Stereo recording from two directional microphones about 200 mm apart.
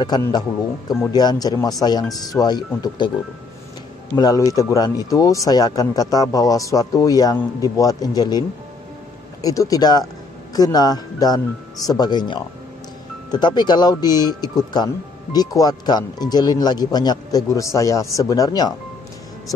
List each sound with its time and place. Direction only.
0.0 s speech: 20° left (ahead or behind)
4.1 s a man's voice: 15° left (ahead or behind)